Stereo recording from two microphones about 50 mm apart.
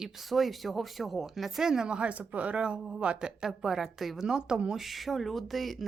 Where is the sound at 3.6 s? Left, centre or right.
Centre.